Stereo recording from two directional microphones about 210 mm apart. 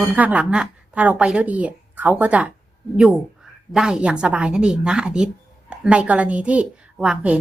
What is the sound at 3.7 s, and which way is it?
A woman's voice, 5° right (ahead or behind).